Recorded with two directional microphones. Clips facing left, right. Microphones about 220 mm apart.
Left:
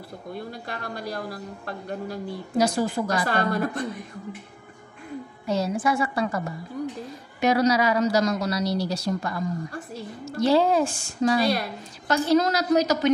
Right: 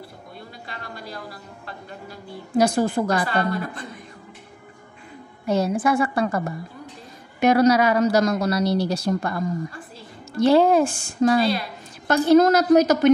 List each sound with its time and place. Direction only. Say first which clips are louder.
0.7 s speech: left 1 dB; 45° left (ahead or behind)
2.5 s speech: right 4 dB; 55° right (ahead or behind)
3.3 s speech: even; 45° left (ahead or behind)
5.5 s speech: right 4 dB; 55° right (ahead or behind)
10.4 s a woman's voice: right 4 dB; 55° right (ahead or behind)